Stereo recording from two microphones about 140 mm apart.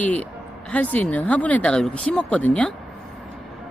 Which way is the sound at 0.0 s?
10° left (ahead or behind).